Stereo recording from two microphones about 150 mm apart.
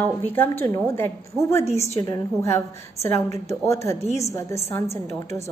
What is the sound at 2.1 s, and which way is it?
A woman's voice, 20° left (ahead or behind).